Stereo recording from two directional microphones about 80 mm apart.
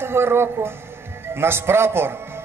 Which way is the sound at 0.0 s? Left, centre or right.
Right.